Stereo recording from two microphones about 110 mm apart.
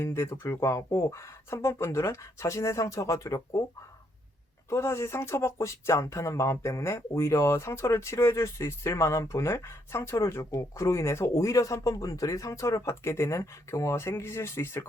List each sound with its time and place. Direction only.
0.0 s speech: 25° left (ahead or behind)
4.7 s speech: 25° left (ahead or behind)